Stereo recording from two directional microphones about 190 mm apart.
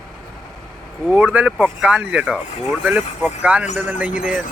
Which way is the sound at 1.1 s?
5° right (ahead or behind).